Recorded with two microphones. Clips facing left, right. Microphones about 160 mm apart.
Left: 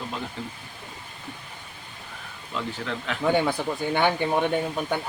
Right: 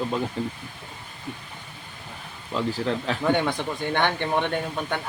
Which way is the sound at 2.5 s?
35° right (ahead or behind).